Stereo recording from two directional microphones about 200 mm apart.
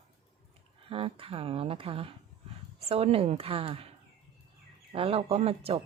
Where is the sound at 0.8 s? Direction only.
30° right (ahead or behind).